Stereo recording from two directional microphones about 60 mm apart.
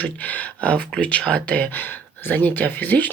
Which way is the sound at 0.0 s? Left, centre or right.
Left.